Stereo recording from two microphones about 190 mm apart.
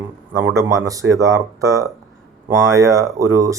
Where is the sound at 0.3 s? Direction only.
15° right (ahead or behind).